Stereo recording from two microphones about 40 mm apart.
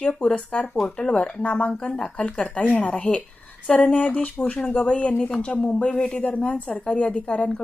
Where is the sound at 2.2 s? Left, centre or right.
Left.